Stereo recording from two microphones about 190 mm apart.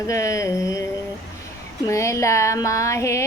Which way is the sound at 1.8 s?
15° left (ahead or behind).